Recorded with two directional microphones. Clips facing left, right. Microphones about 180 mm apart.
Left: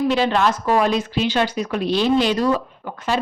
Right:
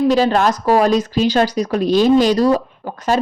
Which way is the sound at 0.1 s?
40° right (ahead or behind).